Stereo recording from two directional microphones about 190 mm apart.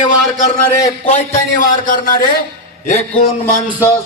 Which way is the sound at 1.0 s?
40° left (ahead or behind).